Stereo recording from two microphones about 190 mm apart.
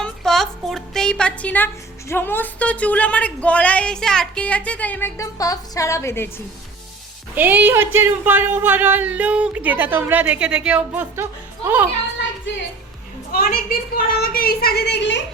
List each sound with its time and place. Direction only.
0.0 s speech: centre (ahead or behind)
7.3 s speech: 10° right (ahead or behind)
13.3 s a woman's voice: 50° left (ahead or behind)